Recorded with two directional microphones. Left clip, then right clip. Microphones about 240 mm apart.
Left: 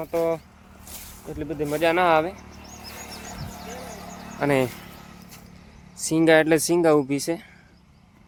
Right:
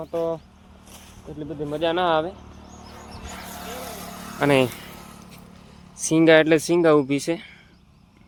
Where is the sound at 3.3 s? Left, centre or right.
Right.